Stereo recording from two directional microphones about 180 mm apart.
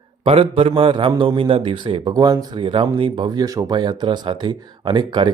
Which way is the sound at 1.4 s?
30° right (ahead or behind).